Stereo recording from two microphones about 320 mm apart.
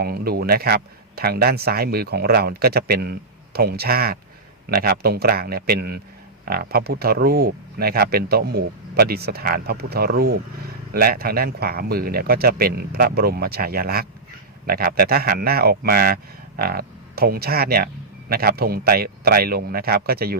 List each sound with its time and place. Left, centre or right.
0.0 s speech: right